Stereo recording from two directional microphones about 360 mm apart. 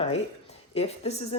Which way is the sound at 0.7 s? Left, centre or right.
Centre.